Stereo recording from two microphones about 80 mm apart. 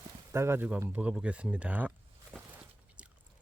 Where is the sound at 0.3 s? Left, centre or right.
Right.